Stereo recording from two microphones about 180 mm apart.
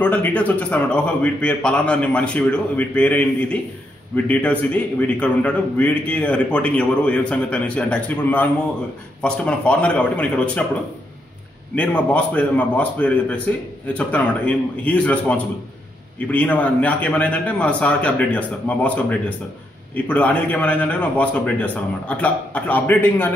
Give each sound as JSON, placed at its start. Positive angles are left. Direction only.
{"t": 0.0, "sound": "a man's voice", "side_deg": 10}